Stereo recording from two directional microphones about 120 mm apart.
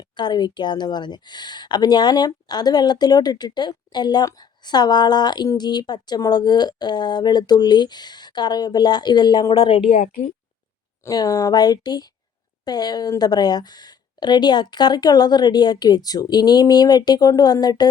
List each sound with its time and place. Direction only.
0.0 s speech: 35° left (ahead or behind)
11.0 s speech: 30° left (ahead or behind)